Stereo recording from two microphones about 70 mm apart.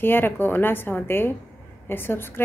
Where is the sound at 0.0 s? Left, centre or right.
Left.